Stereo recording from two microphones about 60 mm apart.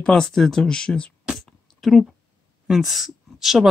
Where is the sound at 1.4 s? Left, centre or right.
Centre.